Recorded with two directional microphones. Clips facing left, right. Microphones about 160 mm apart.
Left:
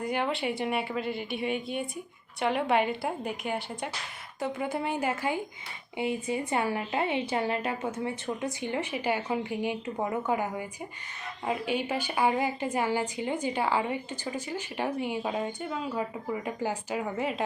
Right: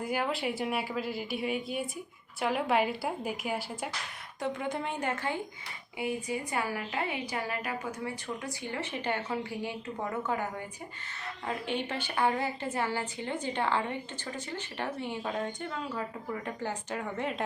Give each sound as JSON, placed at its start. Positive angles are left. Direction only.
{"t": 0.0, "sound": "a woman's voice", "side_deg": -5}
{"t": 6.0, "sound": "a woman's voice", "side_deg": 25}